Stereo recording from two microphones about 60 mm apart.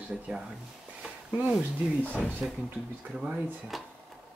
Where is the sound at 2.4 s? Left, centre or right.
Centre.